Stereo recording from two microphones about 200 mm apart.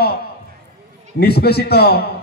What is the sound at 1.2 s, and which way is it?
Speech, 55° left (ahead or behind).